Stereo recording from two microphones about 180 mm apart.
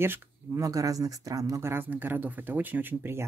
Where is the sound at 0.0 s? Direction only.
15° right (ahead or behind).